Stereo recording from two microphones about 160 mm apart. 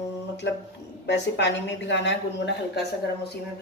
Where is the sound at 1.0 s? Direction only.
90° left.